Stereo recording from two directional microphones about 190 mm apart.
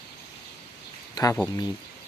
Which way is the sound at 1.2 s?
20° left (ahead or behind).